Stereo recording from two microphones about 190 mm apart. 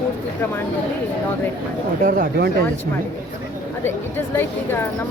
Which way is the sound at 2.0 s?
50° right (ahead or behind).